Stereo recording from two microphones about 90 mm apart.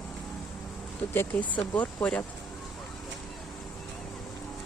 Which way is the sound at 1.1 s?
20° left (ahead or behind).